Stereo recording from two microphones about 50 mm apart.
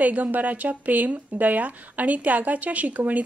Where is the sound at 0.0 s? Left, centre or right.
Right.